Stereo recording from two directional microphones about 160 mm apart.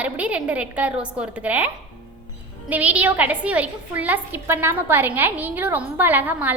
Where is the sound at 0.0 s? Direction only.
10° right (ahead or behind).